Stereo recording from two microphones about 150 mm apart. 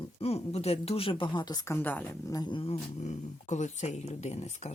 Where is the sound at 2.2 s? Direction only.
25° left (ahead or behind).